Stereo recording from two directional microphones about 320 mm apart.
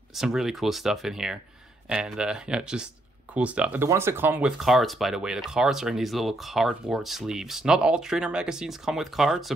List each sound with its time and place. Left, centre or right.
0.1 s speech: centre